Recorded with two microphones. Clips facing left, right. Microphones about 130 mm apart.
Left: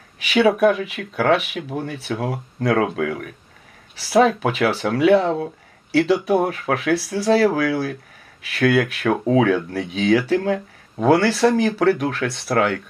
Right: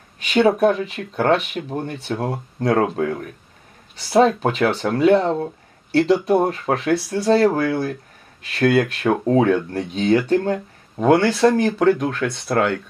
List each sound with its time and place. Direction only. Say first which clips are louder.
0.2 s a sound: even; 5° left (ahead or behind)
0.6 s speech: even; 5° left (ahead or behind)
12.1 s speech: even; 60° left (ahead or behind)